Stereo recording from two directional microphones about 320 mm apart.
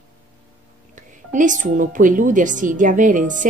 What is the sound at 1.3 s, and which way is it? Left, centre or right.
A woman's voice, right.